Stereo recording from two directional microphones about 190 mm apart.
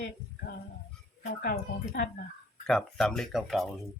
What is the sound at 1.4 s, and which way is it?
Speech, 50° left (ahead or behind).